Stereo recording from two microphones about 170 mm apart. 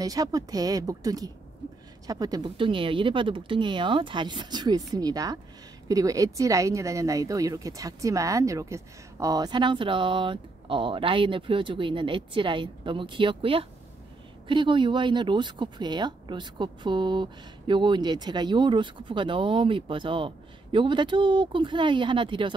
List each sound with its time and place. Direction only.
0.0 s speech: 20° right (ahead or behind)